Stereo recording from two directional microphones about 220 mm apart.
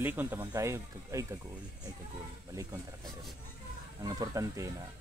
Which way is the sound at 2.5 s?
15° right (ahead or behind).